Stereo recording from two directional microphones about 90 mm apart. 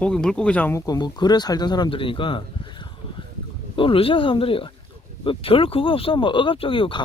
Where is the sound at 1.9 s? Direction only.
75° left (ahead or behind).